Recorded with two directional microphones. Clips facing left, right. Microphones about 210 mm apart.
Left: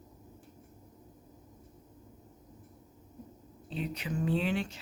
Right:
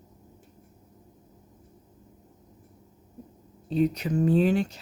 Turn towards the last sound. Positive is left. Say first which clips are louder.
# right 9 dB
turn(degrees=-40)  # may be behind; listen again after turning